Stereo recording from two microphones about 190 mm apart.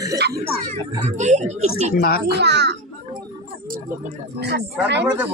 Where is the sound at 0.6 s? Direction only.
40° right (ahead or behind).